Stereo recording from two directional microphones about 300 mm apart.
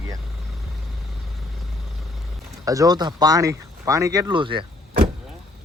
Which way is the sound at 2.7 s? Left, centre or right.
Centre.